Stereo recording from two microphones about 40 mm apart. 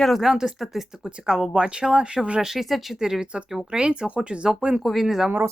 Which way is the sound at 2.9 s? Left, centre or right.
Centre.